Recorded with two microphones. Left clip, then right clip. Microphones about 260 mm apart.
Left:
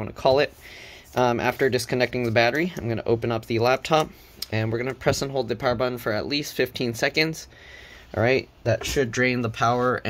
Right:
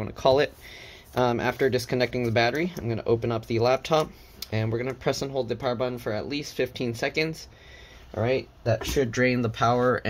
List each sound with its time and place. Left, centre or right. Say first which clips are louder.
0.0 s speech: left 1 dB; centre
8.1 s speech: left 4 dB; left
8.9 s speech: right 1 dB; centre